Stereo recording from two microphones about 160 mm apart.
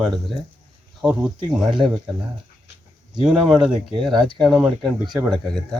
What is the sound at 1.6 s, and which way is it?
Speech, 30° right (ahead or behind).